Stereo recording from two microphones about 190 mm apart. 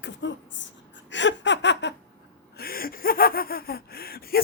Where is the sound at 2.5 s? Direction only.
50° left (ahead or behind).